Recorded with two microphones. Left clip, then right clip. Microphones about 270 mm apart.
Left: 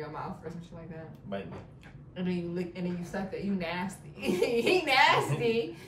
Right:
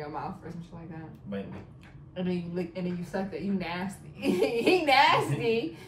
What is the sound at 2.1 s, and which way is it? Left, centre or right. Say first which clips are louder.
A woman's voice: right 2 dB; centre.